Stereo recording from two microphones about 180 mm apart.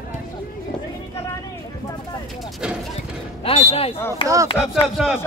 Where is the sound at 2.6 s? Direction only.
5° right (ahead or behind).